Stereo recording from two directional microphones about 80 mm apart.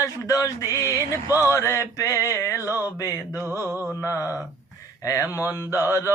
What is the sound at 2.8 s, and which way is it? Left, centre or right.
Mantra, left.